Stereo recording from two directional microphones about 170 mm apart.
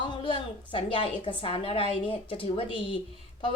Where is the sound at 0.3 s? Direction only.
30° left (ahead or behind).